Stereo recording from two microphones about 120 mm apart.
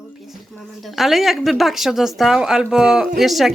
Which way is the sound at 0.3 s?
Centre (ahead or behind).